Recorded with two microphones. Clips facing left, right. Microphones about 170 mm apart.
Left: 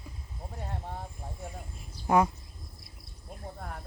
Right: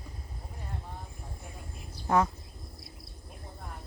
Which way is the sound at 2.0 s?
15° left (ahead or behind).